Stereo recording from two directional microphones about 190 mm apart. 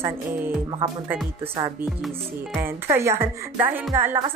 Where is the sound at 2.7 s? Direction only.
15° right (ahead or behind).